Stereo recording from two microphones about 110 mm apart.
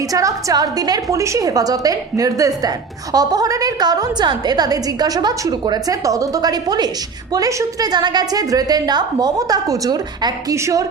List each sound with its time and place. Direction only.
0.1 s a woman's voice: 30° right (ahead or behind)